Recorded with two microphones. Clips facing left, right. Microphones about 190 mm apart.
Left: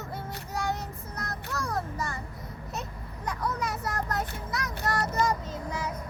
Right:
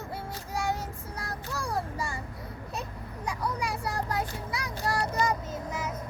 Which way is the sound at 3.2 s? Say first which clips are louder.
Left 1 dB; 10° right (ahead or behind).